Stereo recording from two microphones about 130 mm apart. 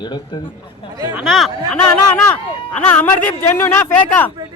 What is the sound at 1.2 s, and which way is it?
Speech, centre (ahead or behind).